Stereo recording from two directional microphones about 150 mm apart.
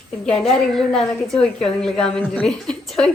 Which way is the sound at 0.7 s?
Centre (ahead or behind).